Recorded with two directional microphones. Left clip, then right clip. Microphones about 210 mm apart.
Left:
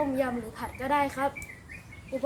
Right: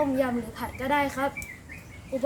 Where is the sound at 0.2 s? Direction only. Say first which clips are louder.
Right 2 dB; centre (ahead or behind).